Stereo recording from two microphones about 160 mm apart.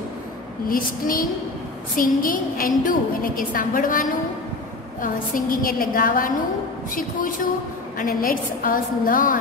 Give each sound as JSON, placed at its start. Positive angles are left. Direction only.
{"t": 0.7, "sound": "a woman's voice", "side_deg": 60}